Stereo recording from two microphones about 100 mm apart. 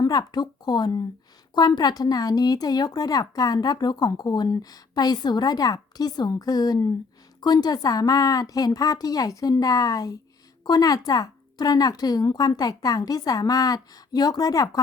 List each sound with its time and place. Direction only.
0.0 s a woman's voice: 40° left (ahead or behind)